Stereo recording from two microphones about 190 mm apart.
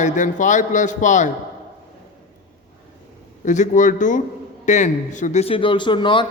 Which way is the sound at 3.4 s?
40° left (ahead or behind).